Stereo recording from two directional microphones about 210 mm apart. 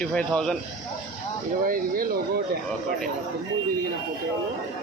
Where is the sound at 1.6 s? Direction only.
40° right (ahead or behind).